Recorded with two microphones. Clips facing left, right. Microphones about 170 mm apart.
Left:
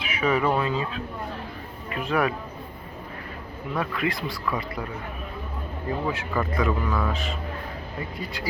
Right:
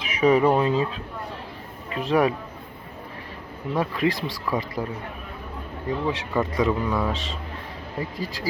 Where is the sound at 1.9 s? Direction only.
30° right (ahead or behind).